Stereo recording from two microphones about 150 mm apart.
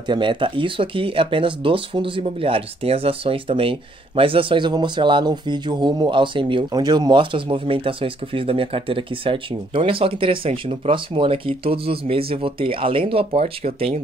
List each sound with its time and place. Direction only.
0.1 s speech: 35° right (ahead or behind)